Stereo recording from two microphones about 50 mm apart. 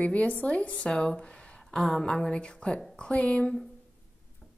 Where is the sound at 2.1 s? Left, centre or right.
Centre.